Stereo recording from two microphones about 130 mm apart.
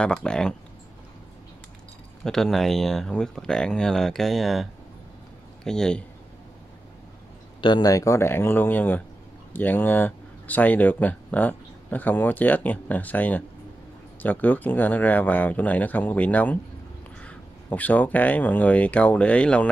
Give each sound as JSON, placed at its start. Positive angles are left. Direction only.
{"t": 0.0, "sound": "speech", "side_deg": 5}
{"t": 2.2, "sound": "a man's voice", "side_deg": 5}
{"t": 7.6, "sound": "speech", "side_deg": 30}